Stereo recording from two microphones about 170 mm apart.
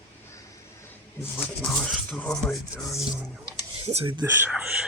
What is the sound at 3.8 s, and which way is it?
Speech, 40° right (ahead or behind).